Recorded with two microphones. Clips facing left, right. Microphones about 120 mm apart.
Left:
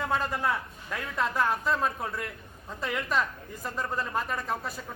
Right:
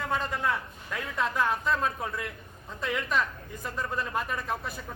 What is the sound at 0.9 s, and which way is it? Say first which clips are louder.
Speech: even; 5° left (ahead or behind).